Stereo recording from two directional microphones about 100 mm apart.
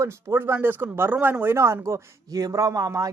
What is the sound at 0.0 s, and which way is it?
Speech, 30° right (ahead or behind).